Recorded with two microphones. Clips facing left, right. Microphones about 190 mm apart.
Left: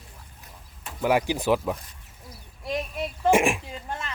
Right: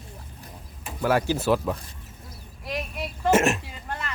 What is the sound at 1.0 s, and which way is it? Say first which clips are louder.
Speech: even; 15° left (ahead or behind).